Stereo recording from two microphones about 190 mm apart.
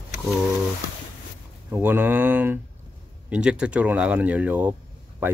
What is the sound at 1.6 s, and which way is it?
Speech, 10° right (ahead or behind).